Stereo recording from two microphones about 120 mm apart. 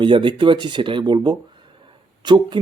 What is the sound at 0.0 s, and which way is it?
Speech, 40° right (ahead or behind).